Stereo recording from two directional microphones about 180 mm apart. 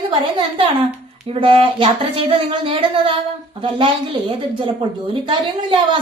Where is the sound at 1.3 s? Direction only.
30° right (ahead or behind).